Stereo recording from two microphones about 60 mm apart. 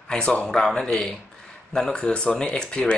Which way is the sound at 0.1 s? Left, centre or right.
Centre.